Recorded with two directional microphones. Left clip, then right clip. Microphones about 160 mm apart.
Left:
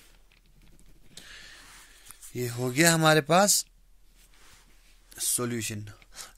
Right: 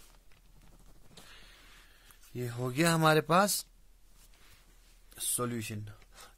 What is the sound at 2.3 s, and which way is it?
Speech, 20° left (ahead or behind).